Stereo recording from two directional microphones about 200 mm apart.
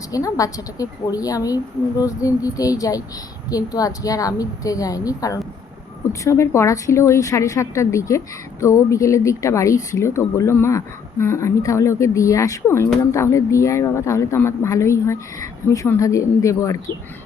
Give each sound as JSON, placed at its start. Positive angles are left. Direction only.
{"t": 0.1, "sound": "speech", "side_deg": 15}